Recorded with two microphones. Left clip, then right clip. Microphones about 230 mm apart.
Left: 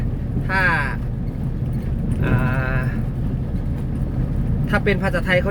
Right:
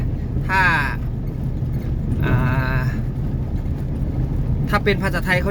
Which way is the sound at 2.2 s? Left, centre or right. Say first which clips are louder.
Even; centre.